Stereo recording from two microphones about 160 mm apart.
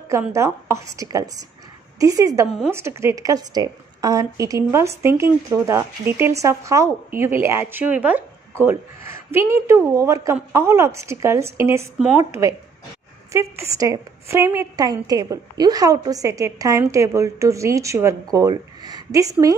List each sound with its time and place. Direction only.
0.1 s a woman's voice: 15° right (ahead or behind)